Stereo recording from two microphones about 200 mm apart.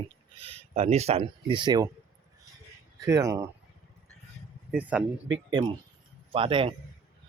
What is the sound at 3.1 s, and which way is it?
Speech, 15° right (ahead or behind).